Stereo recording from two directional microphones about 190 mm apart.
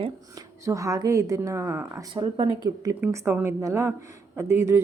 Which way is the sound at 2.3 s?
25° right (ahead or behind).